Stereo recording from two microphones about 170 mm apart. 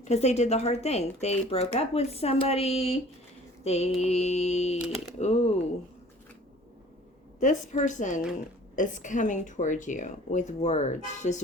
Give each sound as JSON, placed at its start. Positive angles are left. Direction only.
{"t": 0.0, "sound": "speech", "side_deg": 40}
{"t": 7.3, "sound": "speech", "side_deg": 45}